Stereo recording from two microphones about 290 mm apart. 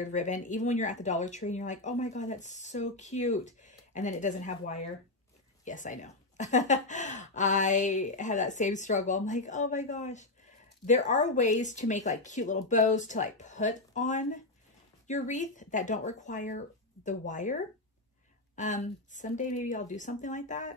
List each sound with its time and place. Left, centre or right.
0.1 s speech: left
18.6 s speech: left